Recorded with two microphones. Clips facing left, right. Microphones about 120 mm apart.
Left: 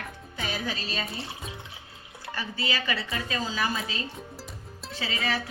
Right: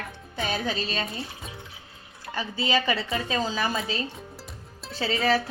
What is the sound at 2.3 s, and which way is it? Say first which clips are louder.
A woman's voice: right 6 dB; 25° right (ahead or behind).